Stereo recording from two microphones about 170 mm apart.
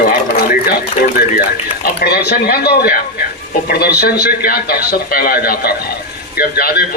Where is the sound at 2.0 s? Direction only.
65° left (ahead or behind).